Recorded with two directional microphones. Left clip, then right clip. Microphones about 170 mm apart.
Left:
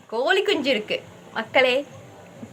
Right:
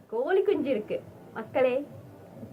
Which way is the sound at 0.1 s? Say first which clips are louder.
Left 5 dB; 5° left (ahead or behind).